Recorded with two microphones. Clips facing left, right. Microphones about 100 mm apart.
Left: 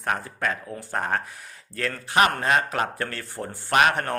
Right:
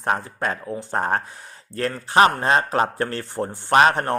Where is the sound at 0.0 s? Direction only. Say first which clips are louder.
Right 3 dB; 30° right (ahead or behind).